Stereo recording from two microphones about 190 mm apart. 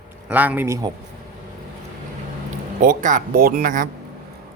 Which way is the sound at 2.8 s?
45° right (ahead or behind).